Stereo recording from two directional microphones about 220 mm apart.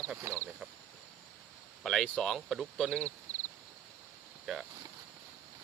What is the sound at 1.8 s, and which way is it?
Speech, centre (ahead or behind).